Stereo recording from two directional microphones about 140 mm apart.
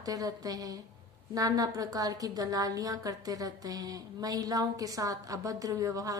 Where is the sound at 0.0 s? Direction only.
25° right (ahead or behind).